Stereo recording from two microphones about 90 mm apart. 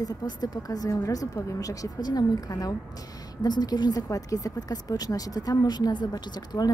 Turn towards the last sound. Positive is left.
turn(degrees=50)  # may be behind; listen again after turning